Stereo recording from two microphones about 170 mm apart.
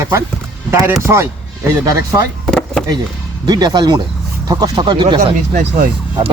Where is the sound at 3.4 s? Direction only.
25° right (ahead or behind).